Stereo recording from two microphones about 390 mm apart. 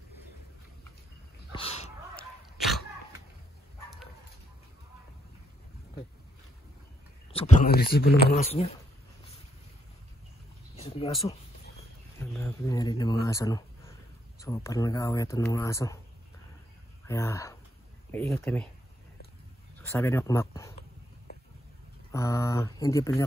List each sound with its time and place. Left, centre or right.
1.5 s sneeze: centre
2.1 s dog: centre
7.3 s speech: left
10.8 s a sound: centre
12.2 s speech: centre
17.1 s speech: centre
19.9 s speech: centre
22.1 s speech: centre